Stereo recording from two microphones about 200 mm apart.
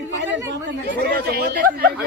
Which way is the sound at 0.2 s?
65° right (ahead or behind).